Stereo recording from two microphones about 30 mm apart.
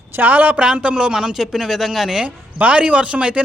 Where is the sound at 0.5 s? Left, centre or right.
Right; by 2.2 s centre.